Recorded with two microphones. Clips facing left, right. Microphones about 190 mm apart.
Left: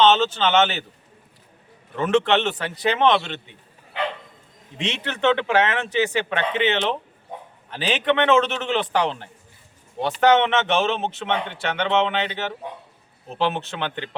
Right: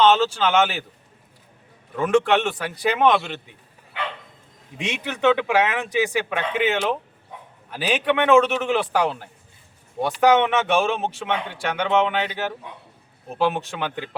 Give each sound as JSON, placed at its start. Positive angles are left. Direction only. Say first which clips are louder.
{"t": 0.0, "sound": "speech", "louder": "even", "side_deg": -10}
{"t": 2.0, "sound": "speech", "louder": "right 1 dB", "side_deg": -10}
{"t": 4.8, "sound": "speech", "louder": "right 1 dB", "side_deg": -10}